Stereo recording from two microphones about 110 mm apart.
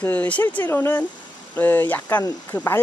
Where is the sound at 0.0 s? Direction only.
15° left (ahead or behind).